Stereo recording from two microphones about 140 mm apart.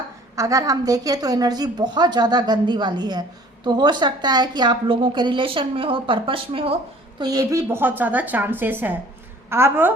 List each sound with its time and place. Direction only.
0.3 s a woman's voice: 25° right (ahead or behind); by 6.7 s 40° right (ahead or behind)
7.2 s a woman's voice: 25° right (ahead or behind)